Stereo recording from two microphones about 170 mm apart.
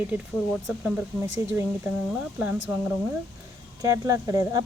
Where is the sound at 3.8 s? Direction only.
20° right (ahead or behind).